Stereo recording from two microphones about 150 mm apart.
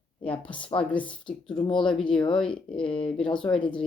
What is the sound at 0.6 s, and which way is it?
Speech, 35° left (ahead or behind).